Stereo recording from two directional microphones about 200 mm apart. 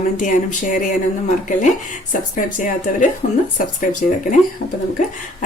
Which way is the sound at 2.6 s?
40° left (ahead or behind).